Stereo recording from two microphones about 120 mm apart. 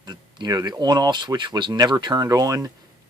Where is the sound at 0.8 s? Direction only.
35° right (ahead or behind).